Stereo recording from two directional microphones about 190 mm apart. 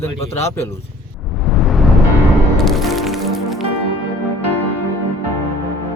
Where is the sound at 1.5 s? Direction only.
Centre (ahead or behind).